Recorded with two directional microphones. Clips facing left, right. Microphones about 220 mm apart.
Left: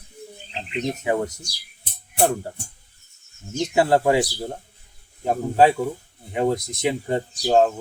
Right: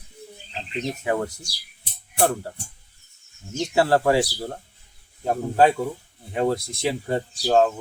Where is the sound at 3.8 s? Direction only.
20° left (ahead or behind).